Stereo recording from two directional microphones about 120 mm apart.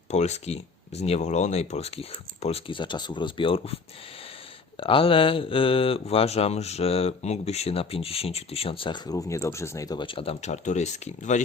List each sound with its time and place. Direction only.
0.1 s speech: 70° left (ahead or behind); by 3.8 s 45° left (ahead or behind)
4.8 s speech: 50° left (ahead or behind)
8.9 s speech: 30° left (ahead or behind)
10.1 s speech: 50° left (ahead or behind)
10.4 s speech: 75° left (ahead or behind)